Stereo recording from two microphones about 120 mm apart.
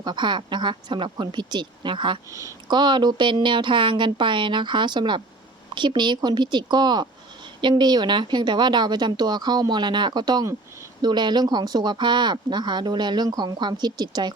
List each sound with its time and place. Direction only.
0.0 s speech: 40° right (ahead or behind)